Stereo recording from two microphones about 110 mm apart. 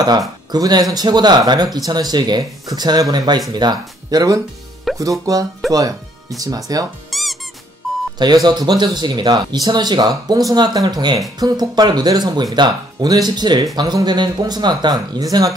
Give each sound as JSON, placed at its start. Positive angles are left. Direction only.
{"t": 0.5, "sound": "speech", "side_deg": -40}
{"t": 4.9, "sound": "music", "side_deg": 0}
{"t": 5.2, "sound": "speech", "side_deg": -35}
{"t": 7.1, "sound": "music", "side_deg": 0}
{"t": 8.5, "sound": "speech", "side_deg": -40}